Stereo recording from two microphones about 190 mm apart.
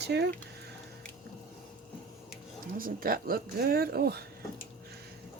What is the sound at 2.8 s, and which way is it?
Speech, 50° right (ahead or behind).